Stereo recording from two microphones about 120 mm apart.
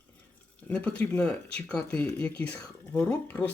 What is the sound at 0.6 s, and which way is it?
Speech, 10° left (ahead or behind).